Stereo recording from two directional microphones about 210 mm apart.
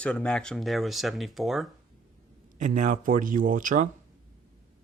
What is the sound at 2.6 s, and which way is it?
Speech, 35° right (ahead or behind).